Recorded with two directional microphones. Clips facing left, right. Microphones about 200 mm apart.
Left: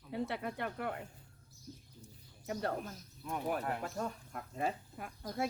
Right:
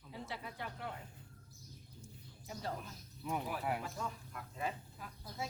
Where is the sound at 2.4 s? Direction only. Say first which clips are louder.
Left 7 dB; 65° left (ahead or behind).